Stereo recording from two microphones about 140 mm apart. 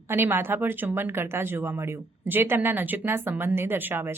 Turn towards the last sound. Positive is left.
turn(degrees=-15)  # may be behind; listen again after turning